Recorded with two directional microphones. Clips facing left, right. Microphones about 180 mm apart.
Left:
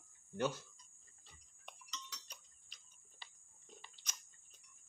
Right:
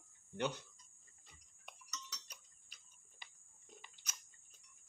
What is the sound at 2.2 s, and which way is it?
Tick-tock, 10° right (ahead or behind).